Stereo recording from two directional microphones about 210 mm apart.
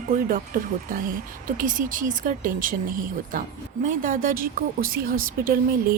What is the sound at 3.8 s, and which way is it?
A woman's voice, 40° right (ahead or behind).